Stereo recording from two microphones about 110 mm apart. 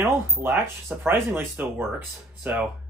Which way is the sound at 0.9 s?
10° right (ahead or behind).